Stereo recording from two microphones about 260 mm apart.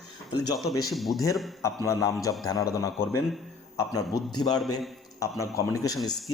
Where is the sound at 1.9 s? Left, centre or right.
Centre.